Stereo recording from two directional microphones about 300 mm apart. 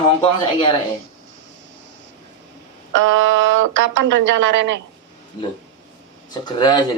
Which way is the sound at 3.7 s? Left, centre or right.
Right.